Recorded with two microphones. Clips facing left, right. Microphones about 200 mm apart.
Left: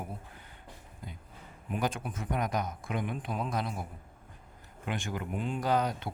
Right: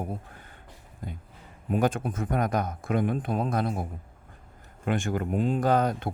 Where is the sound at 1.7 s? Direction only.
50° right (ahead or behind).